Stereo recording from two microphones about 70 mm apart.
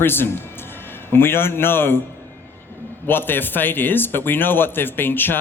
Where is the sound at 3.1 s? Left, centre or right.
Left.